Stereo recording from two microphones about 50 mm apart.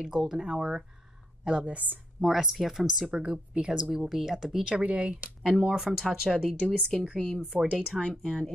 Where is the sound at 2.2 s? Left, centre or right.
Centre.